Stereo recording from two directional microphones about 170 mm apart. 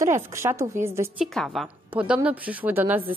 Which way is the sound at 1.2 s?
Centre (ahead or behind).